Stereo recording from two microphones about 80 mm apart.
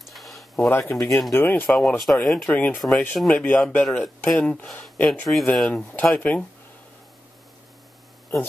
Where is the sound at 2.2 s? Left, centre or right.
Centre.